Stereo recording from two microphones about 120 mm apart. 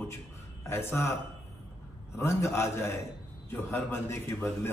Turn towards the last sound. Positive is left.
turn(degrees=20)  # may be behind; listen again after turning